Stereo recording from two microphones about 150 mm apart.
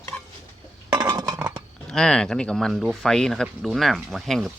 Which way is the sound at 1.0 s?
25° right (ahead or behind).